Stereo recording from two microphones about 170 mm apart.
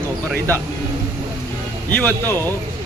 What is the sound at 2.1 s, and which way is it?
Speech, 10° left (ahead or behind).